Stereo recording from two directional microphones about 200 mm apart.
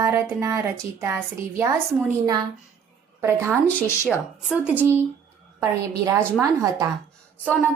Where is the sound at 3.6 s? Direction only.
10° left (ahead or behind).